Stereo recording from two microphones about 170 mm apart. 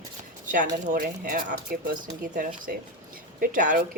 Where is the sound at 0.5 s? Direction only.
50° right (ahead or behind).